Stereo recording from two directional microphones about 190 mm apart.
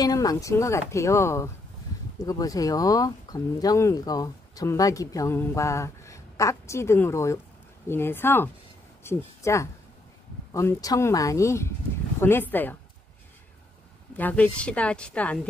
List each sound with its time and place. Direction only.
0.0 s speech: 20° left (ahead or behind)
14.1 s speech: 10° left (ahead or behind)